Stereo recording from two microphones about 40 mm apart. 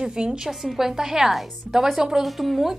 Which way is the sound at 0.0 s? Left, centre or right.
Right.